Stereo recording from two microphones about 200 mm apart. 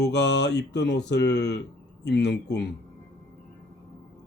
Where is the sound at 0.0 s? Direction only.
60° left (ahead or behind).